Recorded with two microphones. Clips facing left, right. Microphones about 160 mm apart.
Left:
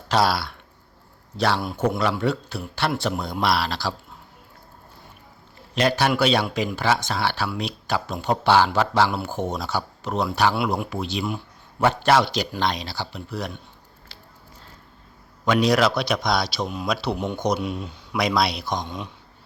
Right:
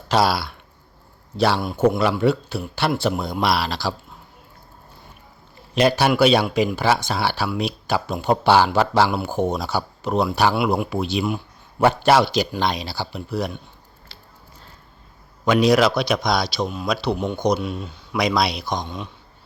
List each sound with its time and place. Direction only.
0.1 s a man's voice: centre (ahead or behind)
5.7 s speech: 10° right (ahead or behind)
14.1 s a sound: 30° right (ahead or behind)
15.6 s a man's voice: centre (ahead or behind); by 18.0 s 15° left (ahead or behind)
18.1 s a man's voice: centre (ahead or behind)
18.9 s speech: 15° left (ahead or behind)